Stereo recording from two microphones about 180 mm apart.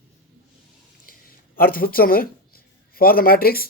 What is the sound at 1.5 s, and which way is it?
Speech, 55° left (ahead or behind).